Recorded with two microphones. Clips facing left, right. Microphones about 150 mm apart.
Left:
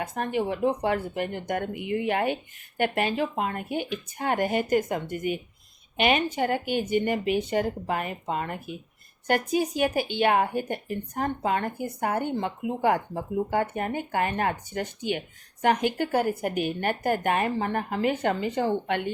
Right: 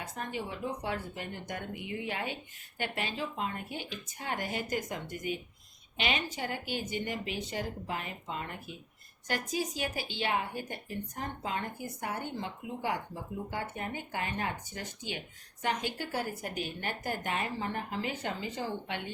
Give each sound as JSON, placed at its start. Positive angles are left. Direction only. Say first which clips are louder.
{"t": 0.0, "sound": "speech", "louder": "left 10 dB", "side_deg": 65}